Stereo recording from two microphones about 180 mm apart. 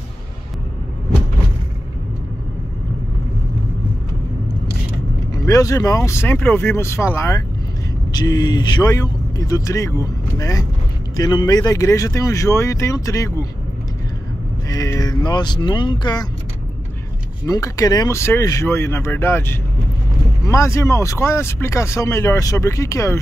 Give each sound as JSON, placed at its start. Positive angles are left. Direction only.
{"t": 5.3, "sound": "speech", "side_deg": 20}
{"t": 14.7, "sound": "speech", "side_deg": 20}
{"t": 17.5, "sound": "speech", "side_deg": 20}